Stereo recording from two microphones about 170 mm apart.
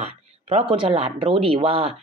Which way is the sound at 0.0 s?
40° right (ahead or behind).